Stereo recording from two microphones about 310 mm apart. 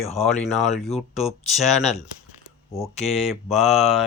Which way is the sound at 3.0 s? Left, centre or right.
Centre.